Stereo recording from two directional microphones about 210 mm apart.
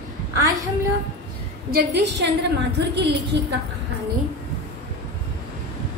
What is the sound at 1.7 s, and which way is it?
A woman's voice, 55° right (ahead or behind).